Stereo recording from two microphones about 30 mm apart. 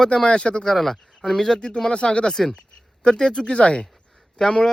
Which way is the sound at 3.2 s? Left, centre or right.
Left.